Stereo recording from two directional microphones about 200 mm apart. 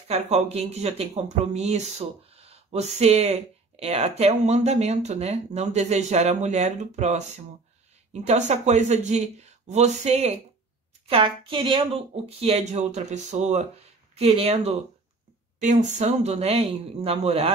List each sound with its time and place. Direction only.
0.1 s speech: 30° right (ahead or behind)